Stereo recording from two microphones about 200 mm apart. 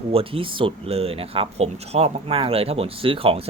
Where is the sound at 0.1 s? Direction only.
30° right (ahead or behind).